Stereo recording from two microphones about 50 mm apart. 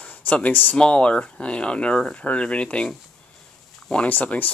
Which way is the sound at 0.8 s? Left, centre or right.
Left.